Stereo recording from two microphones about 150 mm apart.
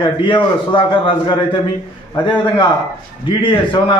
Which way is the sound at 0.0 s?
35° left (ahead or behind).